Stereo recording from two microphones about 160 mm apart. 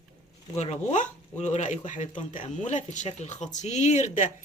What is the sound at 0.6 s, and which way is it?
Speech, 45° left (ahead or behind).